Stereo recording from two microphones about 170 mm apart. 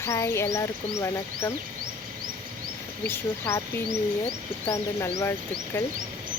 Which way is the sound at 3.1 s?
15° left (ahead or behind).